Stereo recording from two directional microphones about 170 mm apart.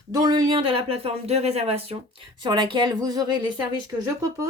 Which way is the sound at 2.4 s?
25° right (ahead or behind).